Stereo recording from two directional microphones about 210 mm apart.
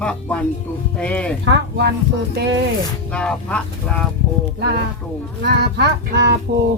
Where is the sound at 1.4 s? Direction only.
50° right (ahead or behind).